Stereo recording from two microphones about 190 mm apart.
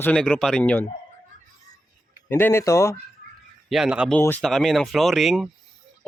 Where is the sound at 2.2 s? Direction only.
10° left (ahead or behind).